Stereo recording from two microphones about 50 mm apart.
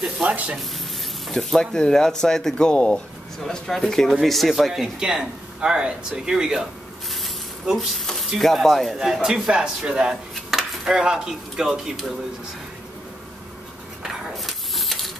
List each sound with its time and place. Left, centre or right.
0.2 s speech: right
1.2 s speech: centre; by 3.0 s left
3.4 s speech: centre
7.7 s speech: centre
9.0 s speech: centre
14.3 s a sound: centre